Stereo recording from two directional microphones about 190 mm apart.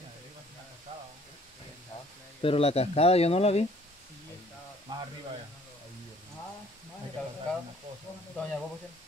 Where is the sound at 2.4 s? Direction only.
30° left (ahead or behind).